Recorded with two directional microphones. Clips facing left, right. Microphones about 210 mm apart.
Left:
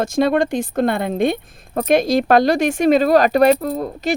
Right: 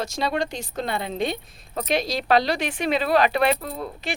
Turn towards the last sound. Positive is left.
turn(degrees=40)  # may be behind; listen again after turning